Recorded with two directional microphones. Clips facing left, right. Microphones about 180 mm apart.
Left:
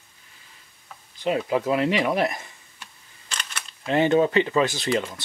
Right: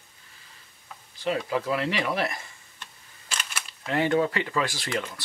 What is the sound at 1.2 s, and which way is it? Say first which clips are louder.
Speech: left 4 dB; 20° left (ahead or behind).